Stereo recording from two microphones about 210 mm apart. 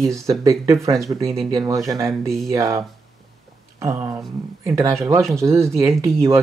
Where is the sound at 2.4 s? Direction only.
15° right (ahead or behind).